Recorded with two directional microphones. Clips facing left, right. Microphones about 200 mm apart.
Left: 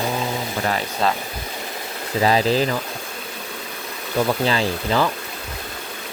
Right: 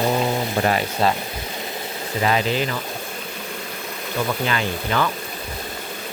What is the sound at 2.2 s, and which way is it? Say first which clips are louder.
Speech: left 3 dB; 35° left (ahead or behind).